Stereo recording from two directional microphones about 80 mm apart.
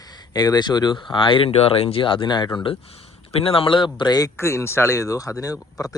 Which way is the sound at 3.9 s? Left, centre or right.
Left.